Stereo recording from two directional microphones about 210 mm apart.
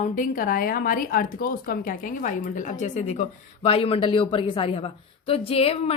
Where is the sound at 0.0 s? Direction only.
40° left (ahead or behind).